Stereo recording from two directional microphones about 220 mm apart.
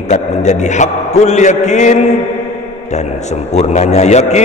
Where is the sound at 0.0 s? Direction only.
30° left (ahead or behind).